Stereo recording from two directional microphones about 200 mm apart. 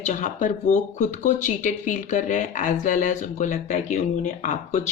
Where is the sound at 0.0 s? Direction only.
35° left (ahead or behind).